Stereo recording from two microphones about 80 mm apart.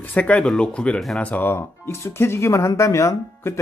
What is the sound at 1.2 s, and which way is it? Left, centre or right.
Speech, left.